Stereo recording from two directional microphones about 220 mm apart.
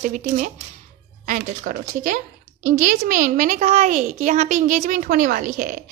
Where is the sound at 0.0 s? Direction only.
35° right (ahead or behind).